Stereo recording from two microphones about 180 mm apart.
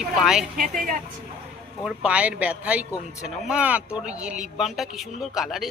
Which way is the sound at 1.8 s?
5° right (ahead or behind).